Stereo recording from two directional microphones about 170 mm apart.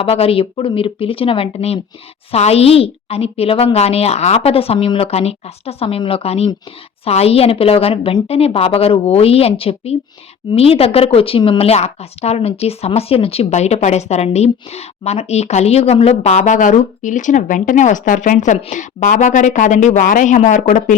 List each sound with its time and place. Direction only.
0.0 s speech: 35° left (ahead or behind)